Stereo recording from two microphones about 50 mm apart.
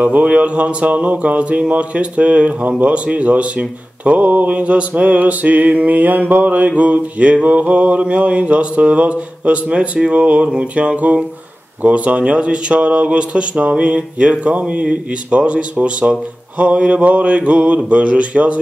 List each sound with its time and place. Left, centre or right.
0.0 s speech: right